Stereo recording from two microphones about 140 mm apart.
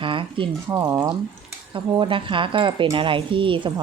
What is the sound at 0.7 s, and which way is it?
Speech, 20° right (ahead or behind).